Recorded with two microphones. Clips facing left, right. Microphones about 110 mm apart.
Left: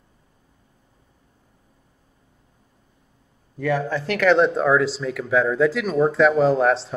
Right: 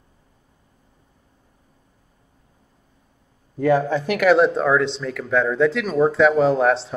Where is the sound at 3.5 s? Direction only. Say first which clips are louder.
Right 5 dB; 25° right (ahead or behind).